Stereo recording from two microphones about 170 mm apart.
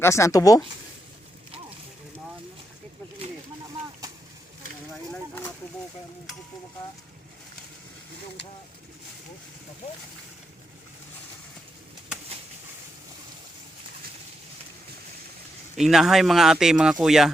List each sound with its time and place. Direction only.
0.0 s speech: 15° left (ahead or behind)
5.1 s a sound: 10° left (ahead or behind)
15.8 s speech: centre (ahead or behind)